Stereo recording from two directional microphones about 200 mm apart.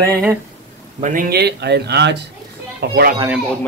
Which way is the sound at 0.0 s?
15° right (ahead or behind).